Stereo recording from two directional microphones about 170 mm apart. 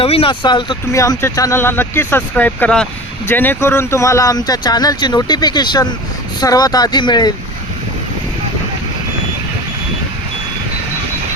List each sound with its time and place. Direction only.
0.0 s speech: 35° left (ahead or behind)